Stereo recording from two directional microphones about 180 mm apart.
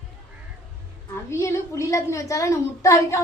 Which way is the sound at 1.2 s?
15° left (ahead or behind).